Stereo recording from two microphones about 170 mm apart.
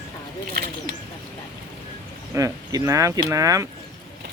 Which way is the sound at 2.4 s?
20° right (ahead or behind).